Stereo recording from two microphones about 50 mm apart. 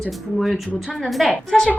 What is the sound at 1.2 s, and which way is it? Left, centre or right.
Speech, centre.